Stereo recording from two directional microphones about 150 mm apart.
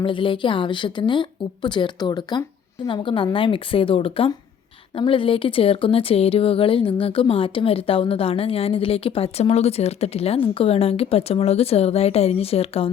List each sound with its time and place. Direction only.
0.0 s speech: 35° left (ahead or behind)